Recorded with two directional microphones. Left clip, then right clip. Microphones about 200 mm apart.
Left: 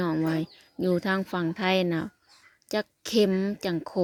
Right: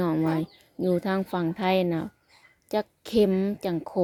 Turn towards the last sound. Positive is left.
turn(degrees=0)  # may be behind; listen again after turning